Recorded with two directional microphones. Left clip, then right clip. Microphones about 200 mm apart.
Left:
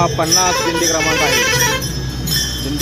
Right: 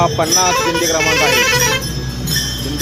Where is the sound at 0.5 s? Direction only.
50° right (ahead or behind).